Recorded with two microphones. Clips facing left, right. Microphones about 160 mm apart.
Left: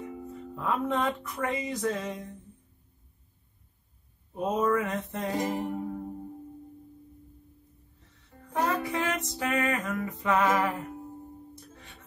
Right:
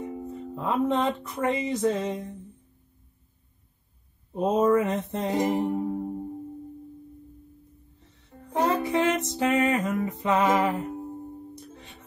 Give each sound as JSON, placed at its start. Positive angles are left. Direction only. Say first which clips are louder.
{"t": 0.0, "sound": "music", "louder": "right 5 dB", "side_deg": -25}
{"t": 4.3, "sound": "music", "louder": "right 5 dB", "side_deg": -25}
{"t": 8.5, "sound": "music", "louder": "right 5 dB", "side_deg": -25}